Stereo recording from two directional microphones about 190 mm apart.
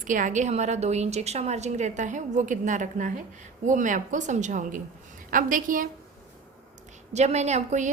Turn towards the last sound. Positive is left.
turn(degrees=-40)  # may be behind; listen again after turning